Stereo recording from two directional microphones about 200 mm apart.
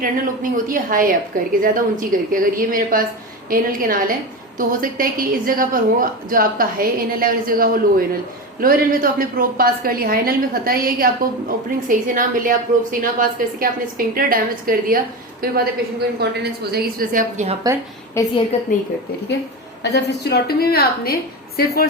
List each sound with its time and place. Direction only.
0.0 s a woman's voice: 45° right (ahead or behind)
18.5 s a woman's voice: 35° left (ahead or behind)
19.8 s a woman's voice: 60° left (ahead or behind)